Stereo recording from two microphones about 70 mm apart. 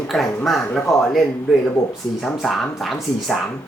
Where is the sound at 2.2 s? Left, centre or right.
Centre.